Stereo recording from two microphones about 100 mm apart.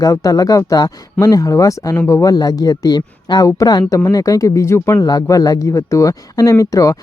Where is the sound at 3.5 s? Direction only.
35° left (ahead or behind).